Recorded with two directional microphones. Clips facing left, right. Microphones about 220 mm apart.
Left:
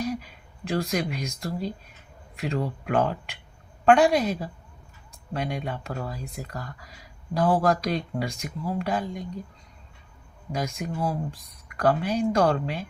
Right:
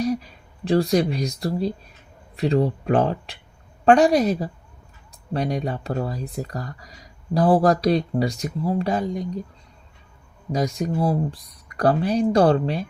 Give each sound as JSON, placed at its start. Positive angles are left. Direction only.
{"t": 0.0, "sound": "speech", "side_deg": -35}
{"t": 10.5, "sound": "speech", "side_deg": -35}